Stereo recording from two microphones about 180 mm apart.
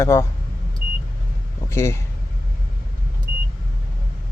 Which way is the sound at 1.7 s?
15° left (ahead or behind).